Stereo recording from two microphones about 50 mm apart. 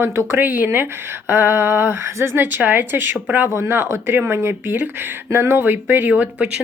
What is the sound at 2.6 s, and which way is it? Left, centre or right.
Speech, right.